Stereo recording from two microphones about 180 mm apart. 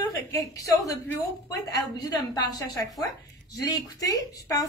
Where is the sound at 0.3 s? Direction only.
20° left (ahead or behind).